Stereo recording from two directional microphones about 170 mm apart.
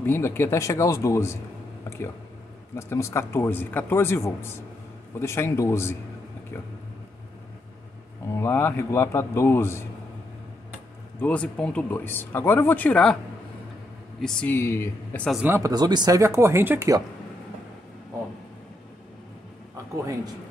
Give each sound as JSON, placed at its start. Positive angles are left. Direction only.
{"t": 0.0, "sound": "speech", "side_deg": 15}
{"t": 2.7, "sound": "speech", "side_deg": 15}
{"t": 8.4, "sound": "speech", "side_deg": 10}
{"t": 11.1, "sound": "speech", "side_deg": 10}
{"t": 14.2, "sound": "speech", "side_deg": 5}
{"t": 15.4, "sound": "speech", "side_deg": -15}